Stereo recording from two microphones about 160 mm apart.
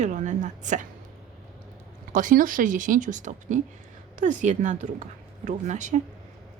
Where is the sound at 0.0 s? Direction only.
50° right (ahead or behind).